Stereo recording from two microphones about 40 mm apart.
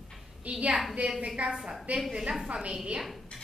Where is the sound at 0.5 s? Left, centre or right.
Right.